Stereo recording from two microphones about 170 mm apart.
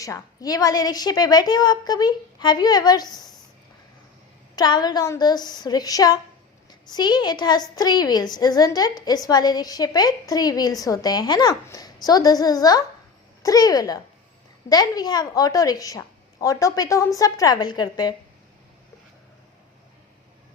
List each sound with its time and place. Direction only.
0.0 s a woman's voice: 20° left (ahead or behind)
4.5 s a woman's voice: 25° left (ahead or behind)